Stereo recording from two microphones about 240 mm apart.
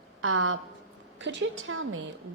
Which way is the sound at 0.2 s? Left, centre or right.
Right.